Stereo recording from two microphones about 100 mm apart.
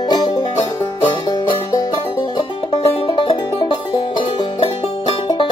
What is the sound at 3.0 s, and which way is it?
Music, 60° left (ahead or behind).